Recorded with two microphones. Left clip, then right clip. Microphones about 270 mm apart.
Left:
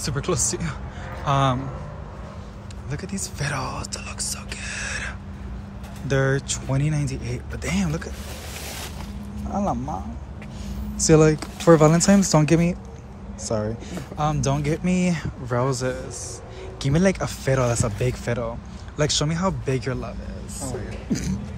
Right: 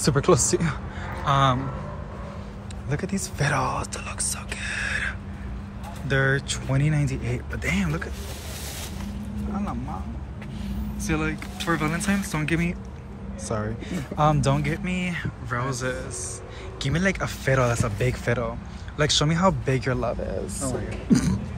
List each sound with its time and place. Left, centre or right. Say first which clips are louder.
0.0 s speech: right 5 dB; centre
2.9 s speech: right 3 dB; centre
9.6 s speech: left 9 dB; centre
11.1 s speech: left 11 dB; left; by 20.2 s centre
21.1 s beatboxing: right 6 dB; centre